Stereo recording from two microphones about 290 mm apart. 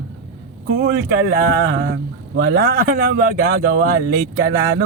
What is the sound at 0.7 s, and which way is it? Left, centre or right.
Speech, right.